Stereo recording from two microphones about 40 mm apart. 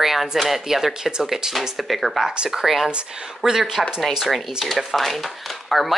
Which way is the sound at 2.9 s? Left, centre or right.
Right.